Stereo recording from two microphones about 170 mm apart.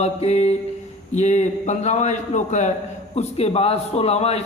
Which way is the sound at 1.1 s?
45° left (ahead or behind).